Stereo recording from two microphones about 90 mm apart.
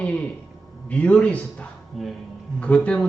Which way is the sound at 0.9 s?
15° left (ahead or behind).